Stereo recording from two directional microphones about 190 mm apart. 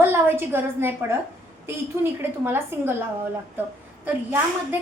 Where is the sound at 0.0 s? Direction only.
10° right (ahead or behind).